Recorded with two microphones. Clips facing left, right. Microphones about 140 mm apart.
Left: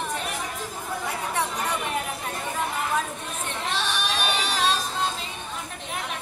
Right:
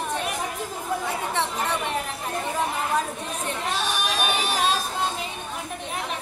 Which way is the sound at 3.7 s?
45° right (ahead or behind).